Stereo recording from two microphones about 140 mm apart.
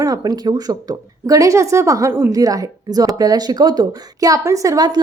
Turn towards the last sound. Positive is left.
turn(degrees=-30)  # may be behind; listen again after turning